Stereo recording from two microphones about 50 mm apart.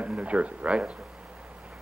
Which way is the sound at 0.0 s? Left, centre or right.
Right.